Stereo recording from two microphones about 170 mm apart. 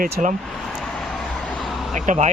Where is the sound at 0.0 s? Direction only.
45° right (ahead or behind).